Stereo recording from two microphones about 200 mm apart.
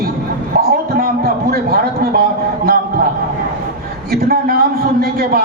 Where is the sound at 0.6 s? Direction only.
50° right (ahead or behind).